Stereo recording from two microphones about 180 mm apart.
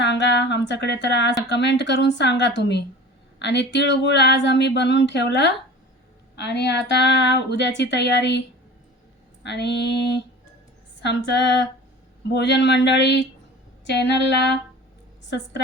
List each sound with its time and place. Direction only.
0.0 s a sound: 75° left (ahead or behind)
1.5 s speech: 75° left (ahead or behind)
11.3 s speech: 75° left (ahead or behind)